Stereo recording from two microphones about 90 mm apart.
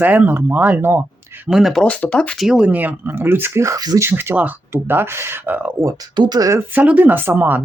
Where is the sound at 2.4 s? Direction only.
5° right (ahead or behind).